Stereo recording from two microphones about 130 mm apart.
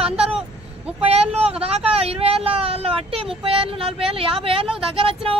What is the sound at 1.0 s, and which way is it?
Speech, 50° right (ahead or behind).